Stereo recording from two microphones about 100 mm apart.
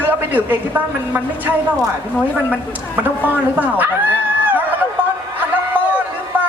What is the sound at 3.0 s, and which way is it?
Speech, 15° right (ahead or behind).